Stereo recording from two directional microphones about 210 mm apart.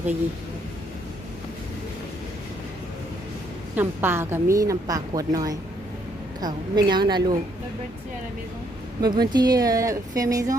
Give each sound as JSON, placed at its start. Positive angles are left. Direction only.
{"t": 3.8, "sound": "a woman's voice", "side_deg": -10}
{"t": 9.0, "sound": "a woman's voice", "side_deg": -20}